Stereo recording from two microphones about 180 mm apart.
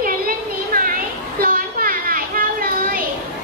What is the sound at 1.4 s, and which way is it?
Children playing, 55° right (ahead or behind).